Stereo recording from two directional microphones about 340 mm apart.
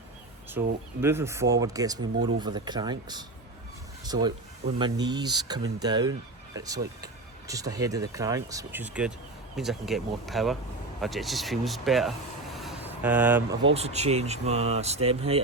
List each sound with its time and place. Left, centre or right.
0.6 s speech: centre
13.7 s speech: centre